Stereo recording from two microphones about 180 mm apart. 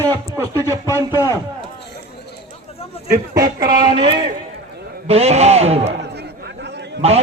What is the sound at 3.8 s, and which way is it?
A man's voice, 25° right (ahead or behind).